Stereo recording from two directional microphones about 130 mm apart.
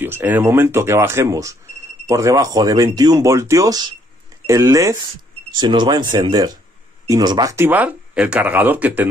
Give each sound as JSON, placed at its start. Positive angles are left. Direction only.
{"t": 0.0, "sound": "speech", "side_deg": -15}
{"t": 7.5, "sound": "speech", "side_deg": -15}